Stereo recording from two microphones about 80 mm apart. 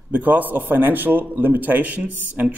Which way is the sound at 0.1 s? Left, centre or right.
Right.